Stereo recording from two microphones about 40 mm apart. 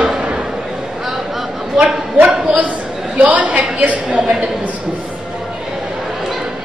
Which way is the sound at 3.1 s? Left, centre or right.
Right.